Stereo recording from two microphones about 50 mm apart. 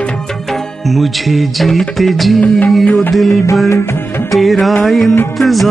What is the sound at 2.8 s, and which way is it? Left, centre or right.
Music, left.